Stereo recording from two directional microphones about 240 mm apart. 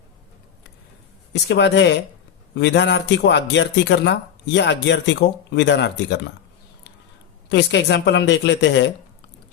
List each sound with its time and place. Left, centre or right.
1.3 s speech: left
7.5 s speech: left